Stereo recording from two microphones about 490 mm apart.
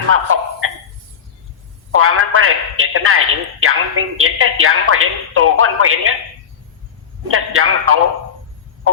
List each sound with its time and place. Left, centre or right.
0.1 s a man's voice: right
2.0 s a man's voice: right
7.3 s a man's voice: right